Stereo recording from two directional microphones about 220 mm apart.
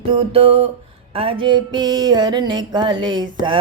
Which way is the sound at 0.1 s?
25° right (ahead or behind).